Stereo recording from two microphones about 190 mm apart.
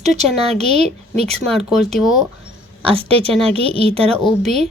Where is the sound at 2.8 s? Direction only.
30° right (ahead or behind).